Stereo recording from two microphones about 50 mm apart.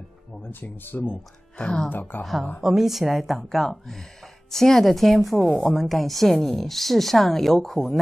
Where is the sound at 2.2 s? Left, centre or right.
Centre.